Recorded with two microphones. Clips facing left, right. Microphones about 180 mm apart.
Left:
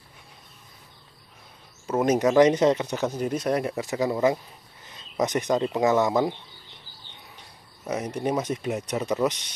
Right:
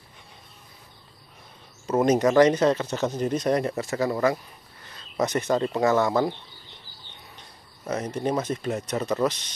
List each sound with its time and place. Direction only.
1.9 s speech: 5° left (ahead or behind)
7.3 s speech: 10° left (ahead or behind)